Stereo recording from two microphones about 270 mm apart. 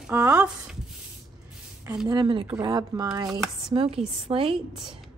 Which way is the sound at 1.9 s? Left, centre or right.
Centre.